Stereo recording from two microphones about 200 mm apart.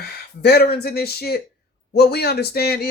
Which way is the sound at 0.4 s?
50° left (ahead or behind).